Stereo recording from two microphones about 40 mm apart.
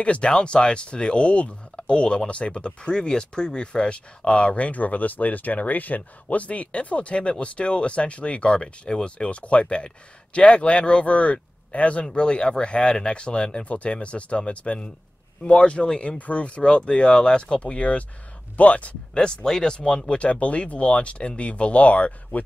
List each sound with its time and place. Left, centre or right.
0.0 s speech: left
12.1 s speech: left
17.6 s speech: left
19.1 s speech: centre; by 22.4 s left